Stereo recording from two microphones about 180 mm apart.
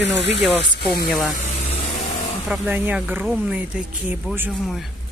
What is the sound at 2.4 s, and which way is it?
Speech, 5° right (ahead or behind).